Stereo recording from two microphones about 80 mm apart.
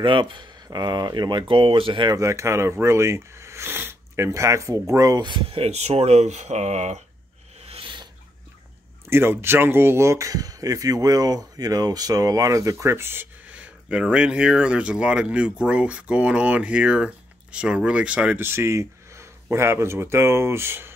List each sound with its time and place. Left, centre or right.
0.0 s speech: right
0.7 s speech: right
2.1 s speech: right
4.3 s speech: right
7.8 s a sound: right
9.1 s speech: right
13.5 s speech: centre
18.4 s speech: right